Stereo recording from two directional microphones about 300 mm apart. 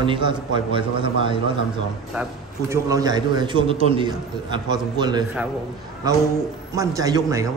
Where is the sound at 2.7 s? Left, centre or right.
Centre.